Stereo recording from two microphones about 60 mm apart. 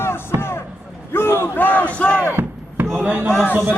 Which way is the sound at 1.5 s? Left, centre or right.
Left.